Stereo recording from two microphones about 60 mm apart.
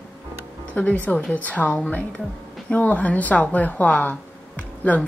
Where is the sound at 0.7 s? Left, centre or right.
Left.